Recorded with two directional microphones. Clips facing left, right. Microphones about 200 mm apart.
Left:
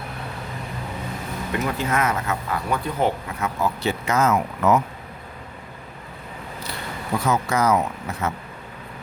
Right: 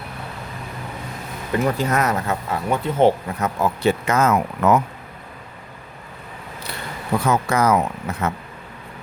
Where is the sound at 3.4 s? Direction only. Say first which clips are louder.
Right 4 dB; 55° right (ahead or behind).